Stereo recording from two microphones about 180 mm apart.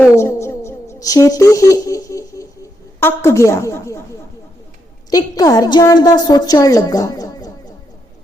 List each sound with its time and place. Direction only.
0.0 s music: 15° left (ahead or behind)
3.0 s a woman's voice: 15° left (ahead or behind)
5.1 s a woman's voice: 20° left (ahead or behind)